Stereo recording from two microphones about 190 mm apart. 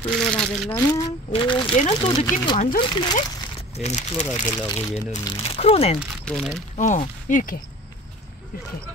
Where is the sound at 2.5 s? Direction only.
45° left (ahead or behind).